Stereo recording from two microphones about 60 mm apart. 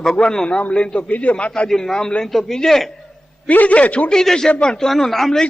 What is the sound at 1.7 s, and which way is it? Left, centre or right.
A man's voice, centre.